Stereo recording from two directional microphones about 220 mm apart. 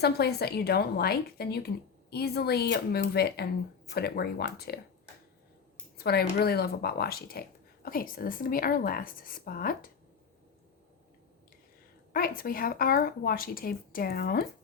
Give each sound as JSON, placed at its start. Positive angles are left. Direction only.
{"t": 0.0, "sound": "a woman's voice", "side_deg": 45}
{"t": 6.0, "sound": "speech", "side_deg": 45}
{"t": 12.1, "sound": "speech", "side_deg": 40}